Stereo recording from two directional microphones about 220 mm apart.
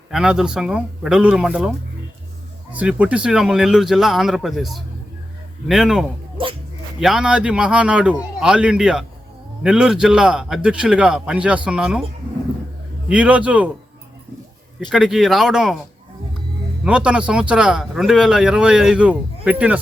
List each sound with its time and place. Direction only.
0.1 s a man's voice: centre (ahead or behind)
2.7 s a man's voice: 5° right (ahead or behind)
6.3 s dog: 25° right (ahead or behind)
7.0 s a man's voice: centre (ahead or behind)
13.1 s a man's voice: 5° right (ahead or behind)
14.8 s a man's voice: centre (ahead or behind)
16.8 s a man's voice: 5° right (ahead or behind)